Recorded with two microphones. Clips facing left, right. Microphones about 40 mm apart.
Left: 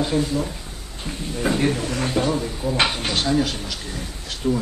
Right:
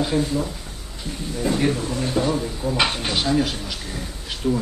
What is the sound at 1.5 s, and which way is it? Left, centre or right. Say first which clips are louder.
Speech: left 1 dB; left.